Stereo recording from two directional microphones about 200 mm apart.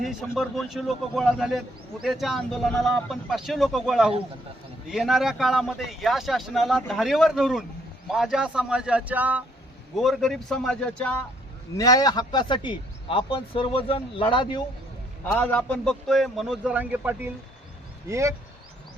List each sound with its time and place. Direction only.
0.0 s a man's voice: centre (ahead or behind)
11.8 s speech: 20° left (ahead or behind)
15.3 s a man's voice: 10° left (ahead or behind); by 18.3 s 15° right (ahead or behind)